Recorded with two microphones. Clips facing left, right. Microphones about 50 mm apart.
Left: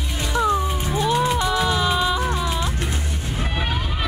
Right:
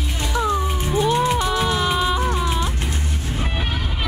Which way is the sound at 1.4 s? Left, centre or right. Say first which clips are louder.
Even; centre.